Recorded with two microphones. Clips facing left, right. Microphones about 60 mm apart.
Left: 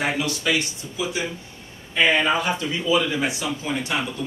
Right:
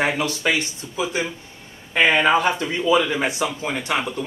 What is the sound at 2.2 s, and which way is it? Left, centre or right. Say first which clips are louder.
Speech: right 4 dB; right.